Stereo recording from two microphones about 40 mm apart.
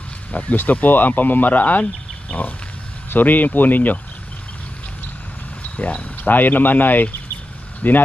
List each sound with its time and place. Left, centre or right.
0.3 s speech: left
3.1 s speech: left
5.8 s speech: left